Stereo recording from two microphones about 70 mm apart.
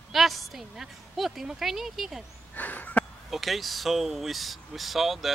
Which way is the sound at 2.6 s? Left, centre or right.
Left.